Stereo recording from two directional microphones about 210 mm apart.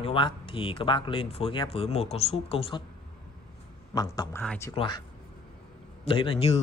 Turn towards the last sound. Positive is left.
turn(degrees=30)  # may be behind; listen again after turning